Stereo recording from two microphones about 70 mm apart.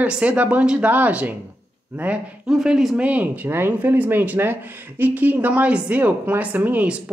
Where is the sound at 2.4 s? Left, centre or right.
Centre.